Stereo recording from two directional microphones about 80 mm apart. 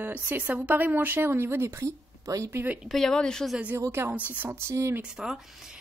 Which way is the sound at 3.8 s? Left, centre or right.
Right.